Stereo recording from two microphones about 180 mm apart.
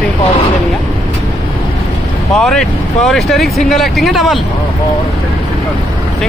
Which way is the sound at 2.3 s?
5° left (ahead or behind).